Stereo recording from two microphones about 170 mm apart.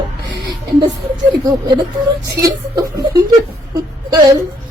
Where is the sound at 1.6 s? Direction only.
25° right (ahead or behind).